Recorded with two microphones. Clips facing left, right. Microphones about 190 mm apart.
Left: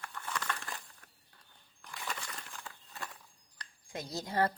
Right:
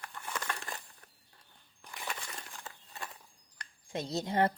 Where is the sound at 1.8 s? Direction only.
20° right (ahead or behind).